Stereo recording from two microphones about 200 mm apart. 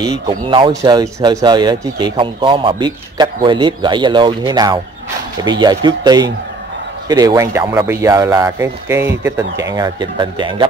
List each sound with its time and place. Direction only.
0.3 s speech: 25° right (ahead or behind)